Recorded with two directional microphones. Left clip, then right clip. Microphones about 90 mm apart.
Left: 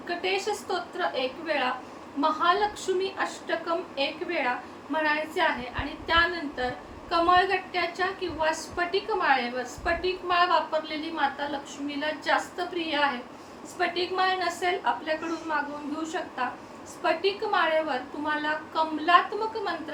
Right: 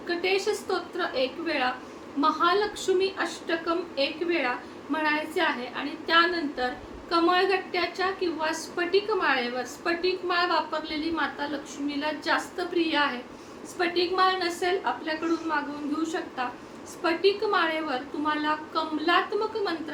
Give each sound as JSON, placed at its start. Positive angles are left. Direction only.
{"t": 0.2, "sound": "a woman's voice", "side_deg": -15}